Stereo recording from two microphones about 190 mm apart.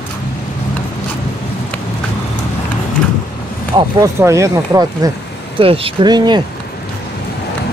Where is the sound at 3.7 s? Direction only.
15° right (ahead or behind).